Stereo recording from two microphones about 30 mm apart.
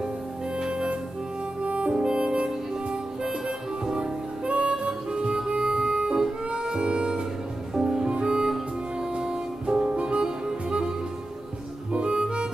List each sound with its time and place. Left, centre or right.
0.6 s music: right
1.6 s music: right
2.0 s music: right
4.5 s harmonica: right
7.7 s music: right
8.1 s music: right
11.9 s harmonica: right